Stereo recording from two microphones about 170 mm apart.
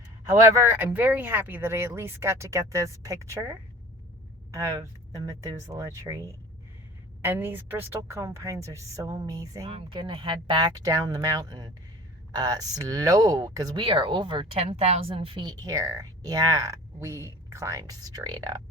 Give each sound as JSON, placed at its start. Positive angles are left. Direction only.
{"t": 0.7, "sound": "speech", "side_deg": -10}
{"t": 4.5, "sound": "speech", "side_deg": -20}